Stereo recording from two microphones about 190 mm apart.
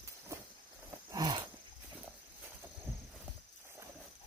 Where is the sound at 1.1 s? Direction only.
20° right (ahead or behind).